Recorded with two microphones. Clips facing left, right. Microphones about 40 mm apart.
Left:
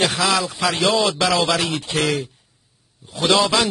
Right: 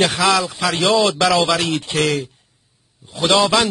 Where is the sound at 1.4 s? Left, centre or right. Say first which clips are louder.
Right 2 dB; centre.